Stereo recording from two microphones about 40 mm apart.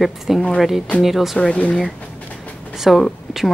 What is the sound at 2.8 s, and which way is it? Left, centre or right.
Speech, centre.